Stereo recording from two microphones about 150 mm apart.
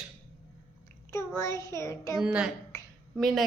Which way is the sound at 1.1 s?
20° left (ahead or behind).